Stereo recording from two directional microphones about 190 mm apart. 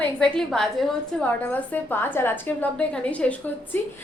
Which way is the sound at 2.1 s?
10° left (ahead or behind).